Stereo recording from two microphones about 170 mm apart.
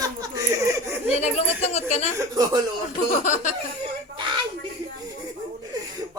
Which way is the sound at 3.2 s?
45° left (ahead or behind).